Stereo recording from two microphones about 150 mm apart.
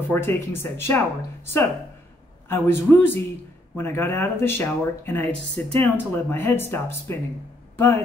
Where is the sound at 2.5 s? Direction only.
15° left (ahead or behind).